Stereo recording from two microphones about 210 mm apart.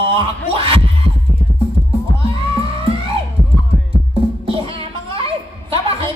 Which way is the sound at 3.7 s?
5° left (ahead or behind).